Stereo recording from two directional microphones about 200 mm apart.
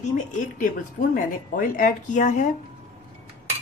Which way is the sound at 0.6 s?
45° left (ahead or behind).